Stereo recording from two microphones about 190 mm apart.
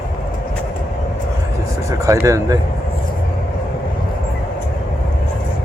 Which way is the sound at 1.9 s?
15° right (ahead or behind).